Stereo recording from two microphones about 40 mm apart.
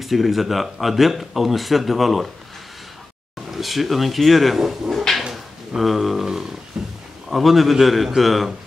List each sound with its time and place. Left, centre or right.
0.0 s speech: centre
3.5 s speech: centre
6.7 s a sound: centre
7.2 s a man's voice: centre